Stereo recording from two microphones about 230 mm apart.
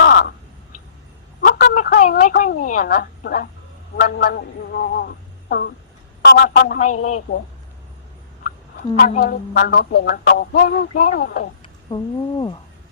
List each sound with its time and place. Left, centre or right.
0.0 s crow: left
1.6 s a woman's voice: left
4.0 s music: left
6.2 s speech: left
9.0 s music: left
11.9 s speech: centre